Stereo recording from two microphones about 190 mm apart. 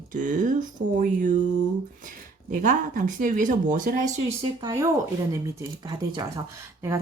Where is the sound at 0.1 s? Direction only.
45° right (ahead or behind).